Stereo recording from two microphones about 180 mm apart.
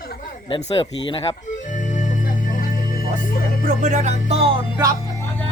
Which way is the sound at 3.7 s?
45° right (ahead or behind).